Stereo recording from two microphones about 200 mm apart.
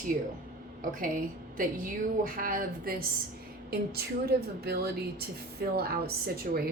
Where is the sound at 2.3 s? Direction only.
45° right (ahead or behind).